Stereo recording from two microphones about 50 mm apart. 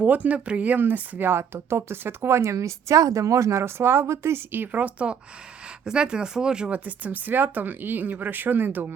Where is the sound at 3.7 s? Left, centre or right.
Right.